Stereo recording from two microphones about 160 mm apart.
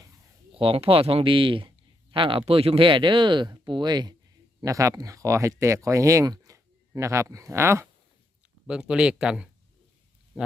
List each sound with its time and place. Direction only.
0.5 s speech: 35° right (ahead or behind); by 7.9 s 15° right (ahead or behind)
8.6 s speech: 5° right (ahead or behind)